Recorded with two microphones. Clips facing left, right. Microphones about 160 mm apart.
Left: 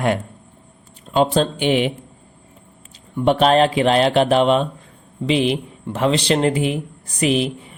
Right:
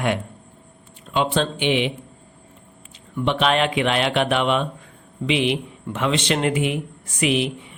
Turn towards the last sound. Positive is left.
turn(degrees=35)  # may be behind; listen again after turning